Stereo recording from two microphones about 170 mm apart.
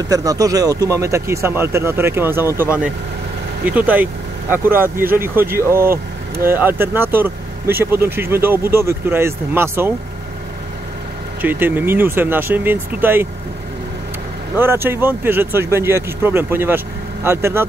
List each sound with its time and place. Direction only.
0.1 s speech: 20° right (ahead or behind)
11.4 s speech: 10° right (ahead or behind)
14.6 s speech: 15° right (ahead or behind)